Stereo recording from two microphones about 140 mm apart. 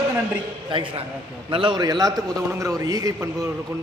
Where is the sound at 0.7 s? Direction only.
35° right (ahead or behind).